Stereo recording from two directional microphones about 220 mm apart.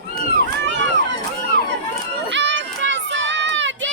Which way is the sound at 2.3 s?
55° right (ahead or behind).